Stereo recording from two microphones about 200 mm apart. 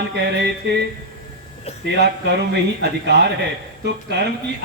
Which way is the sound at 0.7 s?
55° right (ahead or behind).